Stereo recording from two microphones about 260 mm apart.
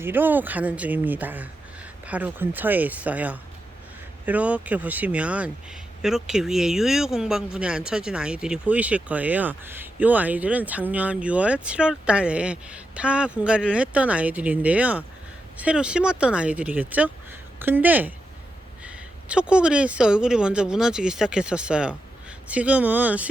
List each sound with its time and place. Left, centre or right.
0.0 s speech: centre